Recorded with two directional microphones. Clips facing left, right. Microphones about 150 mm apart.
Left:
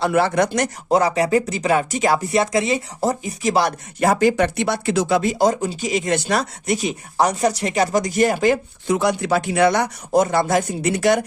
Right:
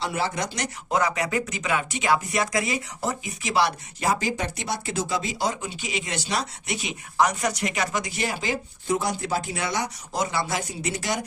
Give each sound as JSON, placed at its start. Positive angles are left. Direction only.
{"t": 0.0, "sound": "speech", "side_deg": 60}
{"t": 0.9, "sound": "speech", "side_deg": 35}
{"t": 8.9, "sound": "speech", "side_deg": 75}